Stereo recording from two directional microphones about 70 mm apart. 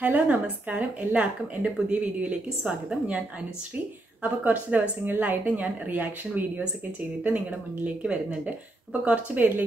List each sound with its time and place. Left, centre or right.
0.0 s speech: right
7.8 s speech: centre